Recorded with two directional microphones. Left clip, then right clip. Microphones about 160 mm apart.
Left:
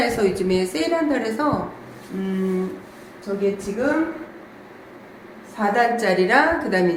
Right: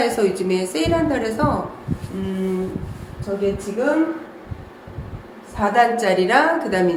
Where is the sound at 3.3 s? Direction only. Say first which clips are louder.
Right 2 dB; 5° right (ahead or behind).